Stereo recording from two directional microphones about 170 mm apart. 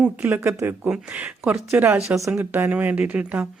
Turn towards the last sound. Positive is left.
turn(degrees=-10)  # may be behind; listen again after turning